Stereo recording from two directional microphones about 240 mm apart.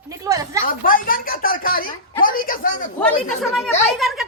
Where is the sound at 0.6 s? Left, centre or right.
Left.